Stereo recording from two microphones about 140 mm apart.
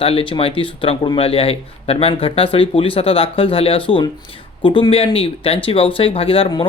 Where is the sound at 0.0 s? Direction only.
40° left (ahead or behind).